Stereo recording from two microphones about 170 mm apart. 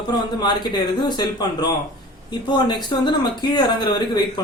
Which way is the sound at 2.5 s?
25° left (ahead or behind).